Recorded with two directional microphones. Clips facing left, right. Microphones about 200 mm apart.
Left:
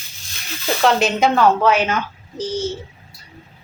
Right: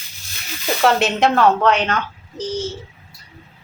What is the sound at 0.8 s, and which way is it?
Speech, centre (ahead or behind).